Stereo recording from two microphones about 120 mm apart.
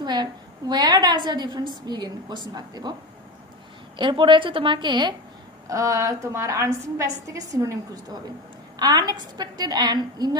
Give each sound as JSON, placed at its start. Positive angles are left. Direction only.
{"t": 0.0, "sound": "a woman's voice", "side_deg": -35}
{"t": 4.0, "sound": "a woman's voice", "side_deg": -40}
{"t": 5.7, "sound": "a woman's voice", "side_deg": -25}